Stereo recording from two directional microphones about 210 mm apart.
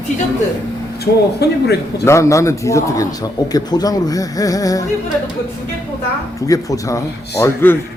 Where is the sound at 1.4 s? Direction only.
50° left (ahead or behind).